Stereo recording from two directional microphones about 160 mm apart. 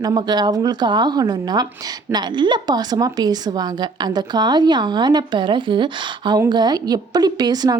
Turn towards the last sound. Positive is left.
turn(degrees=-25)  # may be behind; listen again after turning